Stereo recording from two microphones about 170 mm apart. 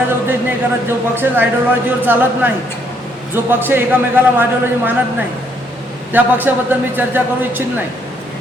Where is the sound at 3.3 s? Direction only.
10° right (ahead or behind).